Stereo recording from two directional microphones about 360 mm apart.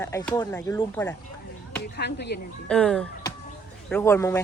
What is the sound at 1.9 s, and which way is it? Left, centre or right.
Speech, left.